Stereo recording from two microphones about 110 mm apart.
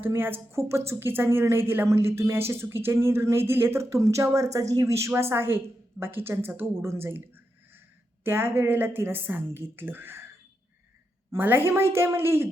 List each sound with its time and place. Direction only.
0.0 s speech: 20° right (ahead or behind)
11.3 s speech: 20° right (ahead or behind)